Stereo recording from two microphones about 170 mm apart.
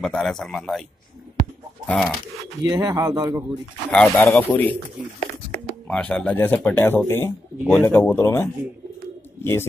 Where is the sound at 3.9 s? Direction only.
10° left (ahead or behind).